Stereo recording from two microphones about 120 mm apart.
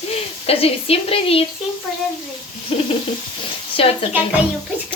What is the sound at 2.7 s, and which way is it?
Speech, 50° left (ahead or behind).